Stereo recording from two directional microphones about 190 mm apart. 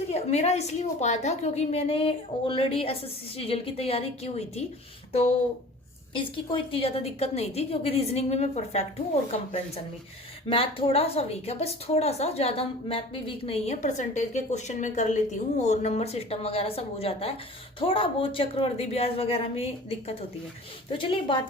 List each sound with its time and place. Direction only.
0.1 s a woman's voice: 35° left (ahead or behind)
6.1 s a woman's voice: 25° left (ahead or behind)
10.5 s a woman's voice: 30° left (ahead or behind)
20.9 s a woman's voice: 25° left (ahead or behind)